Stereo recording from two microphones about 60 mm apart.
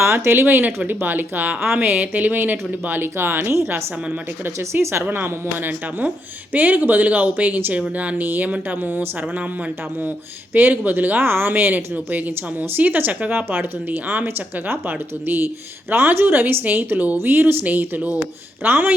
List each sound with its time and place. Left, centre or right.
0.0 s speech: right
3.5 s a woman's voice: right
5.0 s speech: right
13.3 s speech: right
14.3 s speech: right